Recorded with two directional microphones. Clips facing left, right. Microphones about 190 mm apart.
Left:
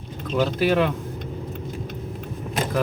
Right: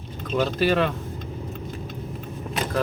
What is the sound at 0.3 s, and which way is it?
Speech, 10° left (ahead or behind).